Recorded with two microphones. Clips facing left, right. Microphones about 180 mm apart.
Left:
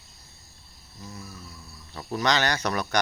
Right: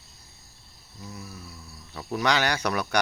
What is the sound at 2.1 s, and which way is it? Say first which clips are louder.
Speech: even; 10° right (ahead or behind).